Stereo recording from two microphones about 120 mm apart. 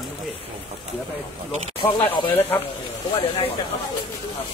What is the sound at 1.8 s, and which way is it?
Speech, 15° left (ahead or behind).